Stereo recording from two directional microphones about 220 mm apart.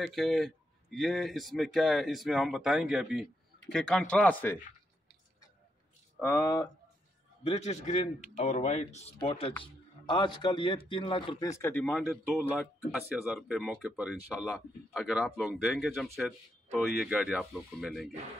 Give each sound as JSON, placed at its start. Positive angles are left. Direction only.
{"t": 0.0, "sound": "speech", "side_deg": 0}
{"t": 6.2, "sound": "speech", "side_deg": 15}
{"t": 7.4, "sound": "a man's voice", "side_deg": 30}